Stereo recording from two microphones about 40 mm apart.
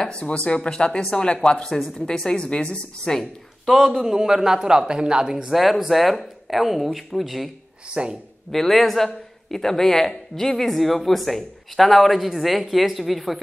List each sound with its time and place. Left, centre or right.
0.0 s speech: left
3.2 s speech: centre
3.9 s speech: centre
5.5 s a man's voice: centre
7.9 s speech: right
8.5 s a man's voice: centre